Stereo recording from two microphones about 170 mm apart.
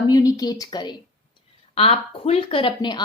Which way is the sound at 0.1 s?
20° left (ahead or behind).